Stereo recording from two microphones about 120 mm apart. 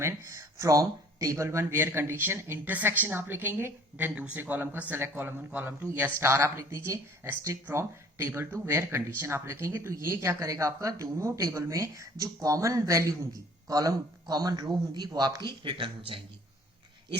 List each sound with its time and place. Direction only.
0.0 s a man's voice: 25° right (ahead or behind); by 16.2 s 45° right (ahead or behind)